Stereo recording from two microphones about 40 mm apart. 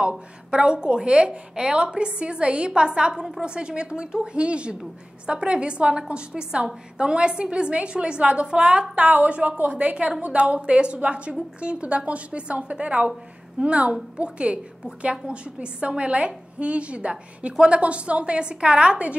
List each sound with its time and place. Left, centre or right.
0.5 s a woman's voice: right
8.9 s a woman's voice: right